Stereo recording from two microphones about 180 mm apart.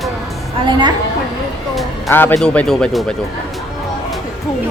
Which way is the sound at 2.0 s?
15° left (ahead or behind).